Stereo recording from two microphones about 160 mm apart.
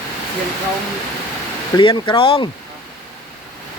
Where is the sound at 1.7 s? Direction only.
30° left (ahead or behind).